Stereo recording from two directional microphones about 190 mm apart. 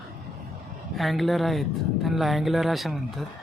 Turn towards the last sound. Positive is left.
turn(degrees=0)  # may be behind; listen again after turning